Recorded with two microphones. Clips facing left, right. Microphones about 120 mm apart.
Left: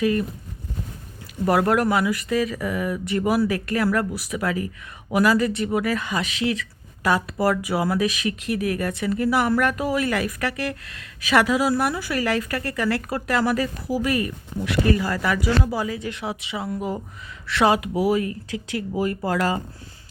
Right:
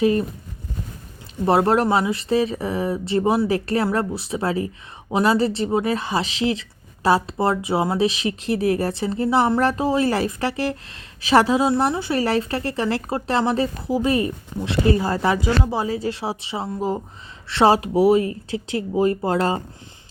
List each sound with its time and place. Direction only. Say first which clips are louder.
0.0 s speech: right 3 dB; 30° right (ahead or behind)
1.5 s speech: right 2 dB; 30° right (ahead or behind)